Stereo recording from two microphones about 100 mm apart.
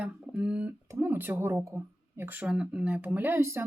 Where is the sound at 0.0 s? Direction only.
10° right (ahead or behind).